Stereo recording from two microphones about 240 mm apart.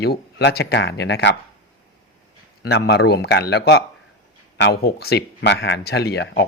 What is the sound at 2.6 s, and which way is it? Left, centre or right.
Speech, left.